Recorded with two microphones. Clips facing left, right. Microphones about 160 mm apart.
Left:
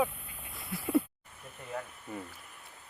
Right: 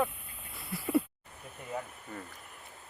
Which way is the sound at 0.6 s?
Centre (ahead or behind).